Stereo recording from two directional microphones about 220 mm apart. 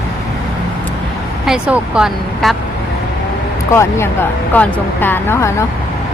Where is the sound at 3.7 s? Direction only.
10° left (ahead or behind).